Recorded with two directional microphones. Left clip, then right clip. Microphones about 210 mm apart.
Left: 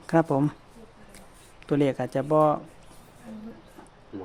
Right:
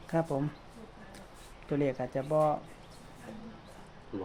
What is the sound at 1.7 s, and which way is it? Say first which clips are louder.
Speech: left 7 dB; 55° left (ahead or behind).